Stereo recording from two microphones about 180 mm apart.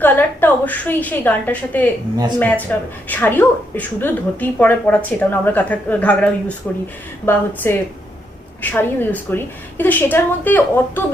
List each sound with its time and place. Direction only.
0.0 s a woman's voice: 10° left (ahead or behind)